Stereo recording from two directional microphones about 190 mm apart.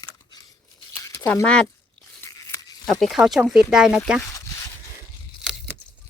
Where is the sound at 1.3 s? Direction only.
5° left (ahead or behind).